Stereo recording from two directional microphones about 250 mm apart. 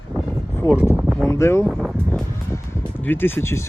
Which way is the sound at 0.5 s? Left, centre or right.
Centre.